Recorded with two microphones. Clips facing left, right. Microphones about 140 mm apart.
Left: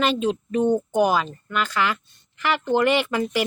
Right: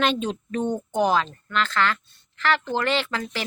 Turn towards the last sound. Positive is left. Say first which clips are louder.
# left 5 dB
turn(degrees=15)  # may be behind; listen again after turning